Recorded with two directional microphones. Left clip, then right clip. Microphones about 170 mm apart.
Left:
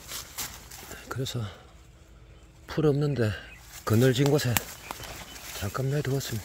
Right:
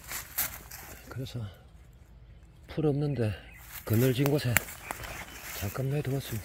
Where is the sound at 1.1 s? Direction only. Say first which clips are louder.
Left 9 dB; 55° left (ahead or behind).